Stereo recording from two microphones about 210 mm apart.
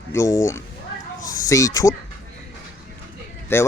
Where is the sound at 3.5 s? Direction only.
10° left (ahead or behind).